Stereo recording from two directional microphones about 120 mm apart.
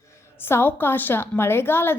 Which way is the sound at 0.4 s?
20° left (ahead or behind).